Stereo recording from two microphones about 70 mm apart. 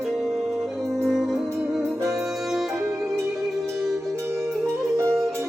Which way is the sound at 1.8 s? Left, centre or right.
Right.